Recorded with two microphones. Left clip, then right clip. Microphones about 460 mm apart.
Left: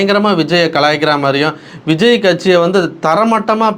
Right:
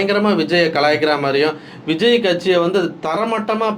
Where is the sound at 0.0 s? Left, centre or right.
Left.